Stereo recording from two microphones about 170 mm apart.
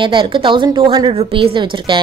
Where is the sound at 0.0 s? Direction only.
30° right (ahead or behind).